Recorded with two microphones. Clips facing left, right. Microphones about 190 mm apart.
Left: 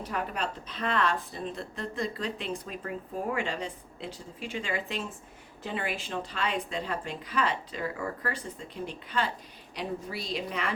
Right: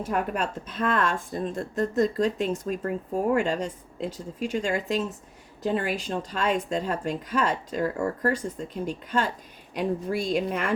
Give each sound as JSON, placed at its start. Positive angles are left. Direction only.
{"t": 0.0, "sound": "speech", "side_deg": -50}